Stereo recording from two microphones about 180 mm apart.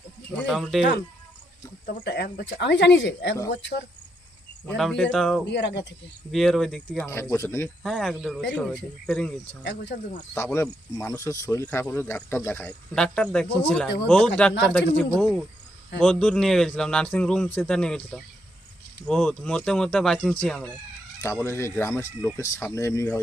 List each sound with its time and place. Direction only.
0.4 s a man's voice: centre (ahead or behind)
2.0 s speech: 65° left (ahead or behind)
4.8 s a man's voice: 5° left (ahead or behind)
5.5 s speech: 75° left (ahead or behind)
6.3 s speech: centre (ahead or behind)
7.9 s a man's voice: 5° left (ahead or behind)
9.6 s speech: 75° left (ahead or behind)
10.3 s a man's voice: 15° left (ahead or behind)